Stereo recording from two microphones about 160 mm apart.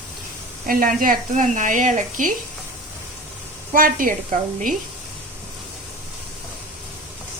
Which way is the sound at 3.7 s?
60° right (ahead or behind).